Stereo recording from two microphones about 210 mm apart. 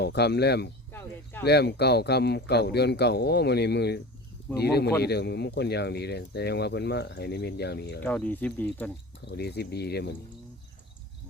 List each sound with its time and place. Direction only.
0.0 s speech: 50° left (ahead or behind)
0.9 s speech: 10° left (ahead or behind)
1.5 s speech: 50° left (ahead or behind)
8.0 s speech: 5° left (ahead or behind)
9.3 s speech: 50° left (ahead or behind)